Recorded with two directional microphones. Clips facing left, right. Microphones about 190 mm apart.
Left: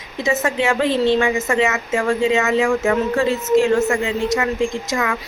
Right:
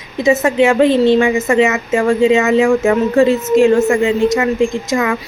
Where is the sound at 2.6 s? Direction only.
25° right (ahead or behind).